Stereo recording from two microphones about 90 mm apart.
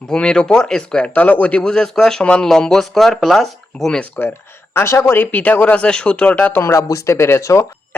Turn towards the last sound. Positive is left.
turn(degrees=35)  # may be behind; listen again after turning